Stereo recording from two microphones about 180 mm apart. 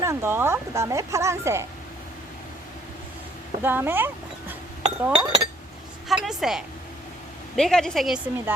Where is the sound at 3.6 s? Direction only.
10° right (ahead or behind).